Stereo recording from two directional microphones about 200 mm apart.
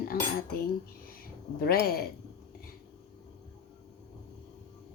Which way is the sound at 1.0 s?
45° left (ahead or behind).